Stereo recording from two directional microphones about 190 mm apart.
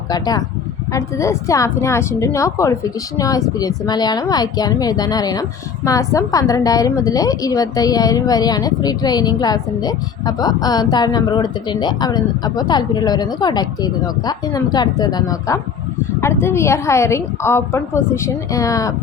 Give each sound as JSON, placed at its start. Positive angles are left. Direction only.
{"t": 0.1, "sound": "a woman's voice", "side_deg": 20}